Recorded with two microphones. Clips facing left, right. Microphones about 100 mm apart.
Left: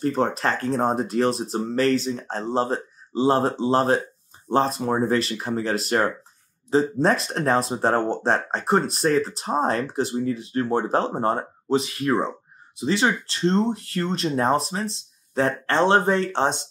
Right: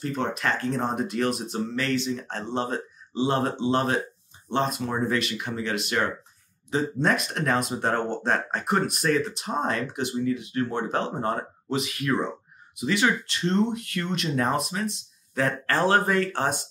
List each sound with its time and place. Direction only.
0.0 s speech: 35° left (ahead or behind)